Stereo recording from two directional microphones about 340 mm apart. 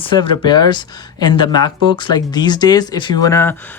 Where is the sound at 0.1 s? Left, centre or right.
Centre.